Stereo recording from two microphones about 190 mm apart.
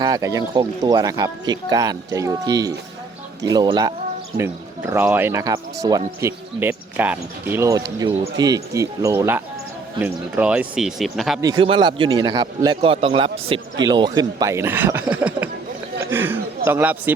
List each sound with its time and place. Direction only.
0.0 s speech: 20° right (ahead or behind); by 11.3 s centre (ahead or behind)
11.3 s speech: 20° right (ahead or behind)
16.0 s a sound: 10° right (ahead or behind)
16.6 s speech: 10° right (ahead or behind)